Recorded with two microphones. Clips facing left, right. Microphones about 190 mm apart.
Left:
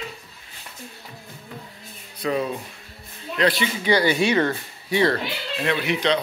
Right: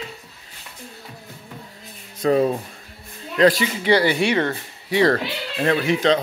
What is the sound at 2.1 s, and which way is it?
Speech, 45° right (ahead or behind).